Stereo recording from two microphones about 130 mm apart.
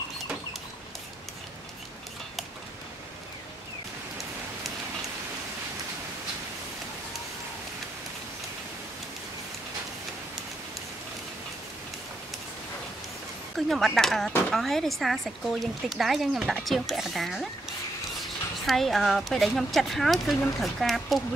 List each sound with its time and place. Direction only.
13.6 s speech: centre (ahead or behind)
18.7 s speech: centre (ahead or behind)